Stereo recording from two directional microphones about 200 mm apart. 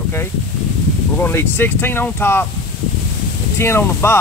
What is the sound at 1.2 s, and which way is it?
Speech, 10° left (ahead or behind).